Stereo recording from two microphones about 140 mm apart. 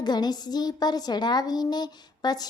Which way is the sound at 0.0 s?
30° left (ahead or behind).